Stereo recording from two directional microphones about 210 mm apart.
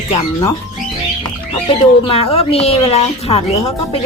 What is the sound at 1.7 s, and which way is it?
Speech, 25° left (ahead or behind).